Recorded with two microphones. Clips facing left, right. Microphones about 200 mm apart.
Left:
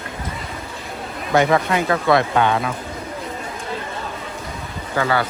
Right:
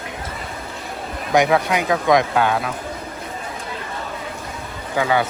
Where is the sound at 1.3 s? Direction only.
10° right (ahead or behind).